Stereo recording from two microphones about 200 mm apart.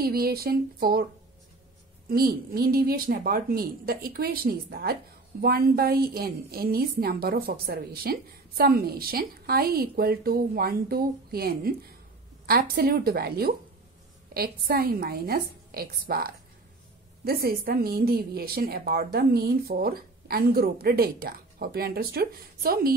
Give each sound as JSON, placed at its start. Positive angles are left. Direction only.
{"t": 0.0, "sound": "a woman's voice", "side_deg": -50}
{"t": 2.0, "sound": "a woman's voice", "side_deg": -50}